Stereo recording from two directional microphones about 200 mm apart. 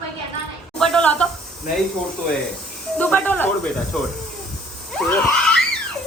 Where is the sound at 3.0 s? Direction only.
10° left (ahead or behind).